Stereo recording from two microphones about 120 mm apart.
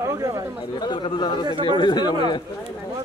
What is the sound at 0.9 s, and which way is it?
Speech, 40° left (ahead or behind).